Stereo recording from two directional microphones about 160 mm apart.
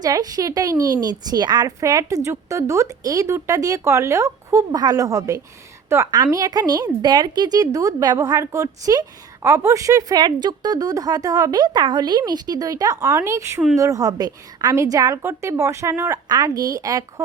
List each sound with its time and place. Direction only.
0.0 s a woman's voice: 25° right (ahead or behind)